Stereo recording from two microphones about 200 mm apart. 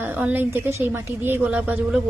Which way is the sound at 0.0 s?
10° right (ahead or behind).